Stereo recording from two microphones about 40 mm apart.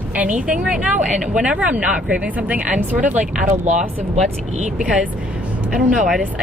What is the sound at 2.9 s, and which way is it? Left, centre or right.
Speech, right.